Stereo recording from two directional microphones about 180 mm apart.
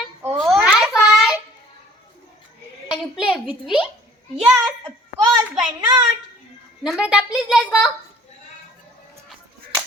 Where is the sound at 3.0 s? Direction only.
Centre (ahead or behind).